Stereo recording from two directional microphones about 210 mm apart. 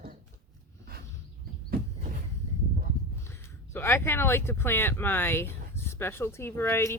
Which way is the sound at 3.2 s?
10° left (ahead or behind).